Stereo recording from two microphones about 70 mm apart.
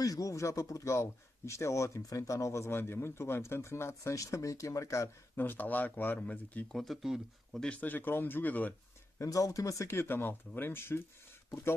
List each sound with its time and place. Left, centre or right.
0.0 s speech: left
5.4 s speech: left
6.7 s speech: centre
7.8 s speech: left
9.2 s speech: left
9.8 s speech: left